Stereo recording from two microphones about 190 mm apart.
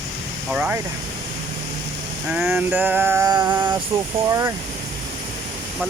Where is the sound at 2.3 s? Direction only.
5° right (ahead or behind).